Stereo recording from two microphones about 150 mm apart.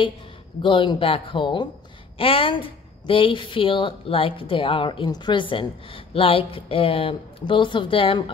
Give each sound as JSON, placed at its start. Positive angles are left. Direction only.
{"t": 0.6, "sound": "a woman's voice", "side_deg": 35}